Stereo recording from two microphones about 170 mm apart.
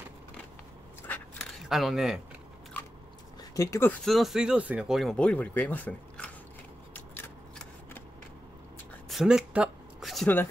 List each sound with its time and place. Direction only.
1.0 s a sound: 10° left (ahead or behind)
1.7 s speech: centre (ahead or behind)
3.5 s speech: 20° left (ahead or behind)
4.0 s speech: centre (ahead or behind)
6.9 s shuffling cards: 10° left (ahead or behind)
9.1 s a sound: 5° right (ahead or behind)